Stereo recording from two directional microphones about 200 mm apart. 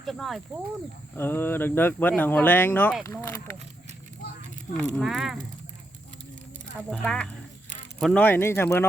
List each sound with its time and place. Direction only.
0.0 s speech: centre (ahead or behind)
1.1 s speech: 10° left (ahead or behind)
4.8 s speech: centre (ahead or behind)
6.9 s speech: 5° left (ahead or behind)